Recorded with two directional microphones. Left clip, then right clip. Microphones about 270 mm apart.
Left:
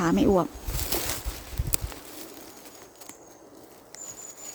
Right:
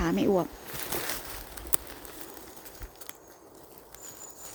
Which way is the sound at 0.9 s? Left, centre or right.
Centre.